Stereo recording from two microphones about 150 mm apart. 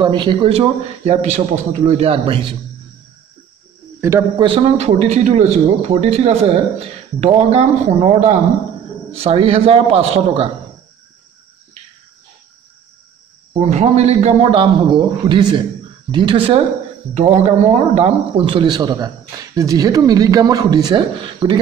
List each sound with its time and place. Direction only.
0.0 s a man's voice: 30° right (ahead or behind)
4.4 s a man's voice: 40° right (ahead or behind)
13.5 s a man's voice: 45° right (ahead or behind); by 21.5 s 30° right (ahead or behind)